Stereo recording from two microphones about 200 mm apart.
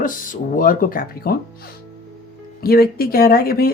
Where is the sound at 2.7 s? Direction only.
50° left (ahead or behind).